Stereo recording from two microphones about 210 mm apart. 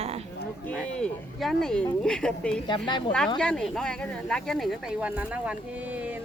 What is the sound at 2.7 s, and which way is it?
Speech, 20° left (ahead or behind).